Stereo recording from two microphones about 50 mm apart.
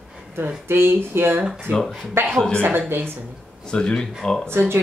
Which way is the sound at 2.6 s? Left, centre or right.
Right.